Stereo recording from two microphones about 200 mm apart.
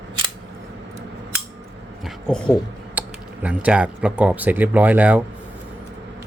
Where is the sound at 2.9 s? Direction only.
5° right (ahead or behind).